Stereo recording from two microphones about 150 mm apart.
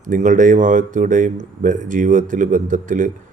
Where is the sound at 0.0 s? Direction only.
55° right (ahead or behind).